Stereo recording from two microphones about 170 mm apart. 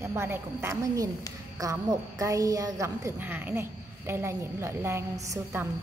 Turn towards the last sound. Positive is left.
turn(degrees=-15)  # may be behind; listen again after turning